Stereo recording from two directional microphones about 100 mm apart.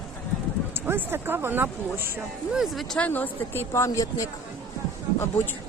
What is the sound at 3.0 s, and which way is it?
Speech, 15° left (ahead or behind).